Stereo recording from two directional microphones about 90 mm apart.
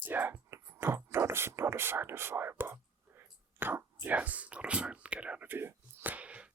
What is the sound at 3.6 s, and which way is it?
Whispering, 25° right (ahead or behind).